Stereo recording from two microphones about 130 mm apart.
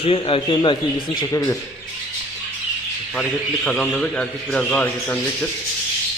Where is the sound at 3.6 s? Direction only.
5° left (ahead or behind).